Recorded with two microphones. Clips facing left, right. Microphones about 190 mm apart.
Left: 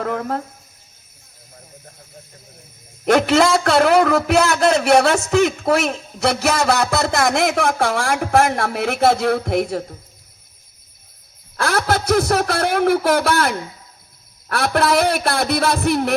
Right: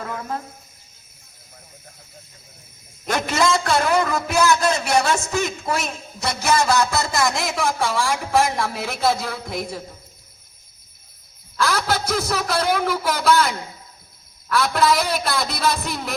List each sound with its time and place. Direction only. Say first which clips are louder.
0.0 s a man's voice: left 6 dB; 65° left (ahead or behind)
3.1 s a man's voice: left 6 dB; 65° left (ahead or behind)
11.5 s a man's voice: left 3 dB; 60° left (ahead or behind)